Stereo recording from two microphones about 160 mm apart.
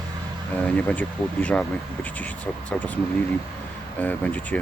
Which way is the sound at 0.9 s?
10° left (ahead or behind).